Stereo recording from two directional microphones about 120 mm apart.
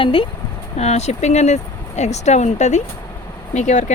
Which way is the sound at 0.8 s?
65° left (ahead or behind).